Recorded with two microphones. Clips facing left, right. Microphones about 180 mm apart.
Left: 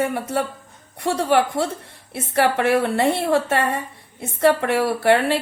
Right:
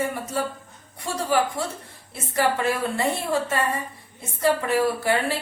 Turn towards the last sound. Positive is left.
turn(degrees=70)  # may be behind; listen again after turning